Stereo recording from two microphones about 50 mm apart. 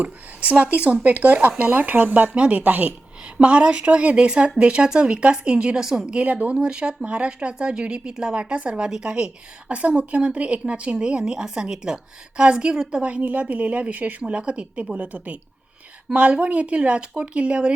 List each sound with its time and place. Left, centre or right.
0.0 s speech: right
5.8 s a woman's voice: centre
6.1 s speech: right
6.6 s a woman's voice: centre
13.0 s speech: right